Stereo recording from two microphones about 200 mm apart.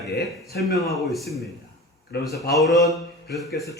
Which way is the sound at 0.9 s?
Centre (ahead or behind).